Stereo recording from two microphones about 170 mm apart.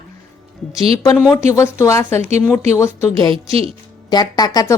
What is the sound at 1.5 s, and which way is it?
A woman's voice, 15° left (ahead or behind).